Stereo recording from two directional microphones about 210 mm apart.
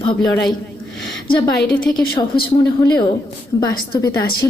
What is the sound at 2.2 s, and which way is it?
Speech, 25° left (ahead or behind).